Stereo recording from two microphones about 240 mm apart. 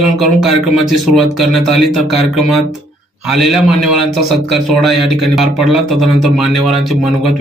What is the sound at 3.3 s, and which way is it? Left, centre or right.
Speech, centre.